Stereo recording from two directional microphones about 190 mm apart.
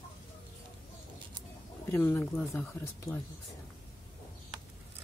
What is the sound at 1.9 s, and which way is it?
Speech, 10° left (ahead or behind).